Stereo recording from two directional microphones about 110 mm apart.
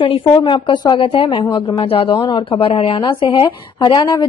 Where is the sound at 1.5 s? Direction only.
40° left (ahead or behind).